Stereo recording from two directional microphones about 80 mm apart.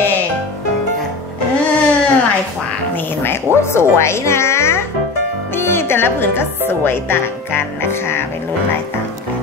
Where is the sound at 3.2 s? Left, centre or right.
Left.